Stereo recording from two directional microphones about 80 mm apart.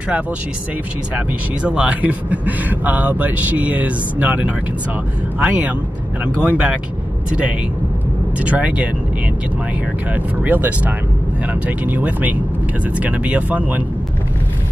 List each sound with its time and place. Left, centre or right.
1.1 s speech: centre
8.4 s speech: centre
10.1 s speech: right